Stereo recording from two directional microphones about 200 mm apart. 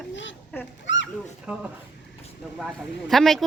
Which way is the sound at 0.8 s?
65° left (ahead or behind).